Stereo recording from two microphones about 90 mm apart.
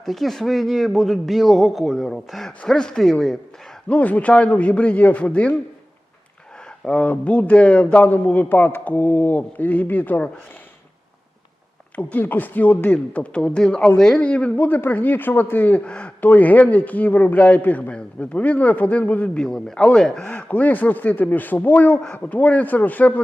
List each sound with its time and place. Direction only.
0.0 s speech: centre (ahead or behind)
3.8 s a man's voice: 15° left (ahead or behind)
6.8 s a man's voice: 15° left (ahead or behind)
11.9 s a man's voice: 15° left (ahead or behind)